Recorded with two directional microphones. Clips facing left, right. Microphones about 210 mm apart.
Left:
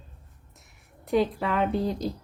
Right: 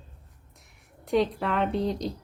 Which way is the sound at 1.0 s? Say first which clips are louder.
Even; centre (ahead or behind).